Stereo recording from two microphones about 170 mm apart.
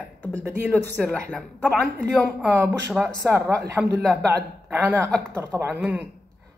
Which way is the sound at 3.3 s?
15° right (ahead or behind).